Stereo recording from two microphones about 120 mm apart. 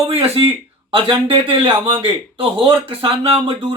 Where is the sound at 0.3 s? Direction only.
45° right (ahead or behind).